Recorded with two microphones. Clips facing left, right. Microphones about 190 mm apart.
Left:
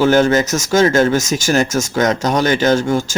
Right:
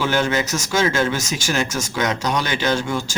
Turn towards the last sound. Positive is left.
turn(degrees=45)  # may be behind; listen again after turning